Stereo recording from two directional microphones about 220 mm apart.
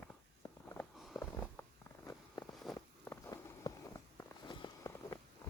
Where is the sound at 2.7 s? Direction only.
15° left (ahead or behind).